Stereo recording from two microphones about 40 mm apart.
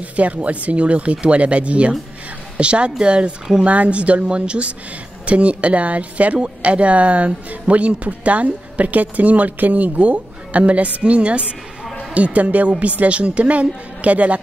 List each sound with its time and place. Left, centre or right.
0.1 s speech: right